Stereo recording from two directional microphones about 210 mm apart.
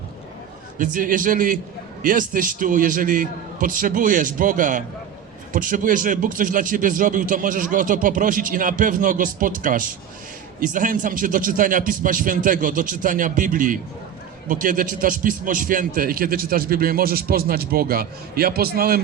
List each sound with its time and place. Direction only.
0.8 s a man's voice: 40° right (ahead or behind)